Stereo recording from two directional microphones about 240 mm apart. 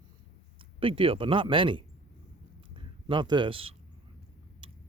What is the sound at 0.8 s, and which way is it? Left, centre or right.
Speech, right.